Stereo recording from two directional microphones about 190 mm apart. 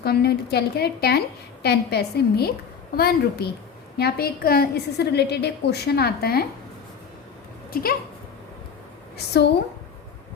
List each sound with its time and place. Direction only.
0.0 s a woman's voice: 55° left (ahead or behind)
7.7 s speech: 50° left (ahead or behind)
9.1 s a woman's voice: 60° left (ahead or behind)